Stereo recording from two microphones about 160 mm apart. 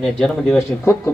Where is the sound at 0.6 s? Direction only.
15° left (ahead or behind).